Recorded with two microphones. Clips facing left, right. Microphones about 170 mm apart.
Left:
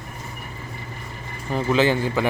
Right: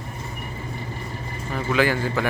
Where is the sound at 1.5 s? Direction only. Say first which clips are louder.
Left 2 dB; 25° left (ahead or behind).